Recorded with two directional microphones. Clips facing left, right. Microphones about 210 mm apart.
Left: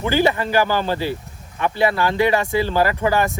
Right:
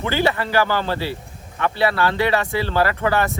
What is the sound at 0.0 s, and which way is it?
Speech, 15° left (ahead or behind).